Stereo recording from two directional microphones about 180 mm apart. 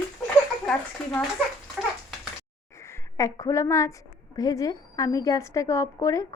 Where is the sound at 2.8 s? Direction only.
15° left (ahead or behind).